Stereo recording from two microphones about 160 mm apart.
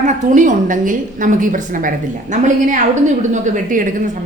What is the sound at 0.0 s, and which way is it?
A woman's voice, 55° right (ahead or behind).